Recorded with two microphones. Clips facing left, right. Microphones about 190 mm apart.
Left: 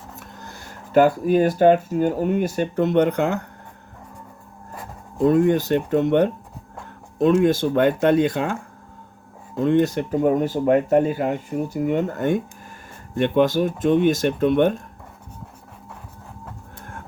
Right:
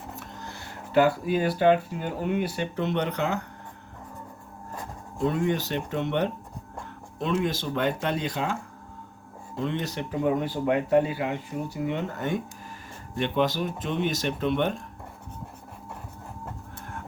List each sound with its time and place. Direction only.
0.2 s speech: 45° left (ahead or behind)
4.7 s writing: 10° left (ahead or behind)
5.2 s speech: 45° left (ahead or behind)
9.6 s speech: 50° left (ahead or behind)